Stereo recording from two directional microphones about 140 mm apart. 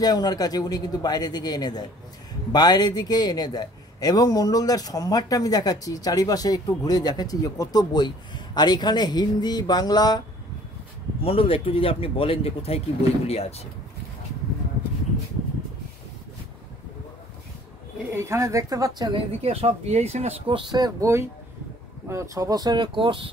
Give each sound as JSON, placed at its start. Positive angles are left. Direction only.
{"t": 0.0, "sound": "a man's voice", "side_deg": 30}
{"t": 11.2, "sound": "speech", "side_deg": 40}
{"t": 18.1, "sound": "speech", "side_deg": -20}
{"t": 19.4, "sound": "speech", "side_deg": -45}
{"t": 20.5, "sound": "speech", "side_deg": -30}